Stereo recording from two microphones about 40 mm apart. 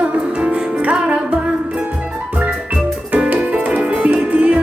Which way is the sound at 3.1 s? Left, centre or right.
Right.